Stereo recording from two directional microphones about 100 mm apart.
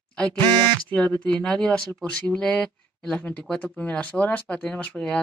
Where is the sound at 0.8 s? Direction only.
15° left (ahead or behind).